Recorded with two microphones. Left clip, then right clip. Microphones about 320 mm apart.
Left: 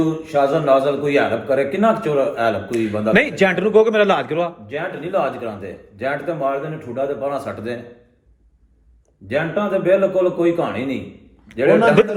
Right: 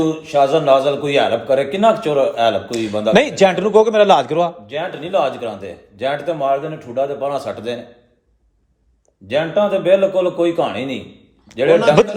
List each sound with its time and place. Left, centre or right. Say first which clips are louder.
0.2 s a man's voice: right 3 dB; right
9.2 s a man's voice: right 4 dB; right